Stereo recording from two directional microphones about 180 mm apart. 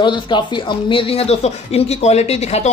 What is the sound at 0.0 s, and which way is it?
Speech, 25° left (ahead or behind).